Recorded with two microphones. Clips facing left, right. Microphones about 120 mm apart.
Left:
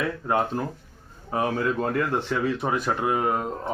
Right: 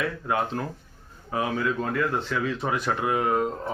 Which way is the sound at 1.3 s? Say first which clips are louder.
Left 2 dB; 35° left (ahead or behind).